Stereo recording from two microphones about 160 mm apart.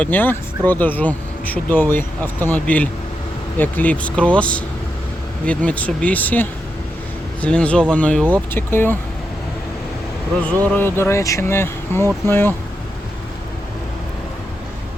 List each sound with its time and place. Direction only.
0.0 s speech: 10° left (ahead or behind)
10.4 s speech: 10° left (ahead or behind)